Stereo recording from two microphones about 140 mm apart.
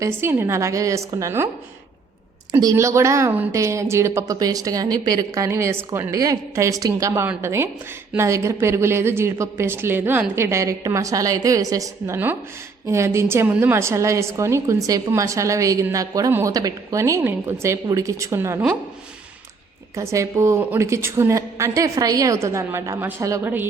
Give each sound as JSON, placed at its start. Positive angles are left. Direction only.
{"t": 0.0, "sound": "a woman's voice", "side_deg": -15}
{"t": 2.5, "sound": "a woman's voice", "side_deg": -25}
{"t": 20.0, "sound": "a woman's voice", "side_deg": -20}